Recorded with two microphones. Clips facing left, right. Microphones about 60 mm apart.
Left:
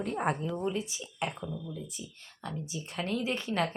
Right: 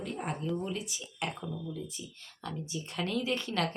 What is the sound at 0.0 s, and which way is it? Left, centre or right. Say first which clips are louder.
Speech: left 6 dB; left.